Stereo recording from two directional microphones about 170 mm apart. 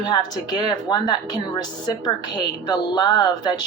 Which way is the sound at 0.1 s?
25° left (ahead or behind).